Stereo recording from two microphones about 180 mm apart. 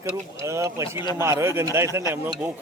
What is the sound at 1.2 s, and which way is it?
Speech, 15° right (ahead or behind).